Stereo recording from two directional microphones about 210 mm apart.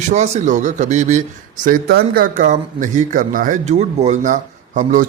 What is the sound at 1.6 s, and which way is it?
A man's voice, 45° right (ahead or behind).